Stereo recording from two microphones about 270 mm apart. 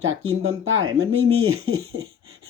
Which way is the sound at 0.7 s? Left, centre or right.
Right.